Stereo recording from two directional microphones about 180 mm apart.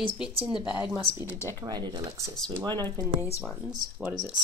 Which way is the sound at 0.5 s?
25° left (ahead or behind).